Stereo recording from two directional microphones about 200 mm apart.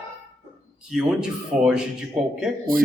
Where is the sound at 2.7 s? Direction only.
45° right (ahead or behind).